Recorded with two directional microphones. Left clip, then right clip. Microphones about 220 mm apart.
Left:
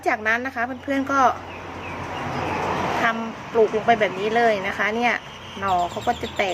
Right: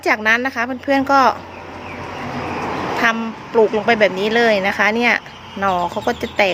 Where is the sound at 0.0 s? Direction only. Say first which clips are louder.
Right 6 dB; 40° right (ahead or behind).